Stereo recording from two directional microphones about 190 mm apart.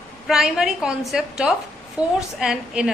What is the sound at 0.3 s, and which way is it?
A woman's voice, centre (ahead or behind).